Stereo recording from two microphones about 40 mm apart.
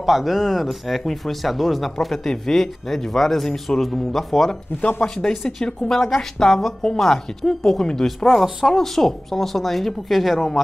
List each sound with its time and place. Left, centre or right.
0.0 s speech: centre